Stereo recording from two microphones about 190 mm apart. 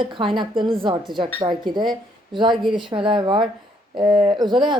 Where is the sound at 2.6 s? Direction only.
Centre (ahead or behind).